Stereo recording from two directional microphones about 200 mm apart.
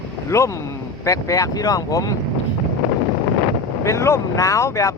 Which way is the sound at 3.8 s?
15° left (ahead or behind).